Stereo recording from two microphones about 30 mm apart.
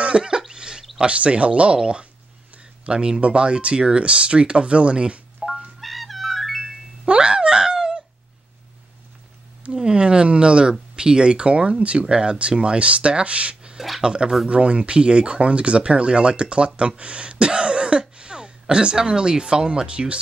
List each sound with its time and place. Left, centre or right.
0.0 s cough: right
0.5 s a sound: right
1.0 s speech: right
2.9 s speech: right
5.4 s cat: centre
5.8 s music: centre
7.1 s a sound: right
9.8 s speech: right